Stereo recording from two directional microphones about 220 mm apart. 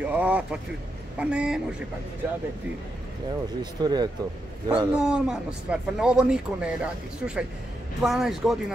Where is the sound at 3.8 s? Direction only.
20° right (ahead or behind).